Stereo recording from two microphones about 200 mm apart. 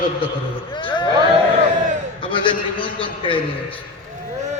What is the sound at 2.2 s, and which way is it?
A man's voice, 25° left (ahead or behind).